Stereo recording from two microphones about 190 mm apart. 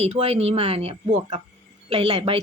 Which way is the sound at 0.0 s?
35° right (ahead or behind).